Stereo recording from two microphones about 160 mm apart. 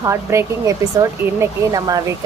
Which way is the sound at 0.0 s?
15° right (ahead or behind).